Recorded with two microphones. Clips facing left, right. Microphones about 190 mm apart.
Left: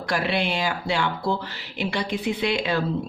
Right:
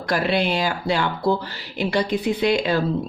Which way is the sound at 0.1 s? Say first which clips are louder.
Right 4 dB; 40° right (ahead or behind).